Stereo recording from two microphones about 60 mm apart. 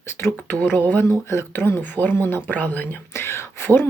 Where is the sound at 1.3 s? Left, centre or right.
Left.